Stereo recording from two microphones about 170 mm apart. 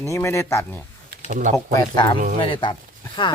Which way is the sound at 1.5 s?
20° left (ahead or behind).